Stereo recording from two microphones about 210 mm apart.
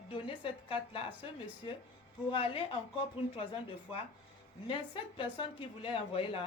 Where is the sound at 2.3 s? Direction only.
25° left (ahead or behind).